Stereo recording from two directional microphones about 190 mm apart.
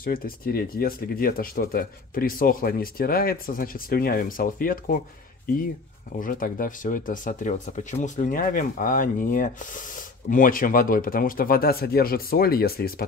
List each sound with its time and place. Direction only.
0.0 s speech: 50° left (ahead or behind)
6.1 s speech: 45° left (ahead or behind)